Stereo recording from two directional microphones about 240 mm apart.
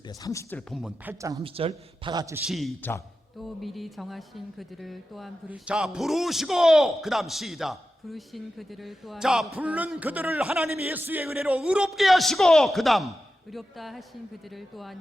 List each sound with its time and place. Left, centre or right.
0.2 s speech: centre
0.7 s speech: centre
1.5 s a man's voice: right
2.5 s speech: centre